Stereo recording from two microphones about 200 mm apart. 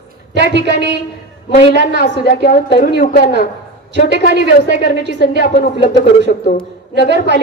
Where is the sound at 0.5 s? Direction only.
60° right (ahead or behind).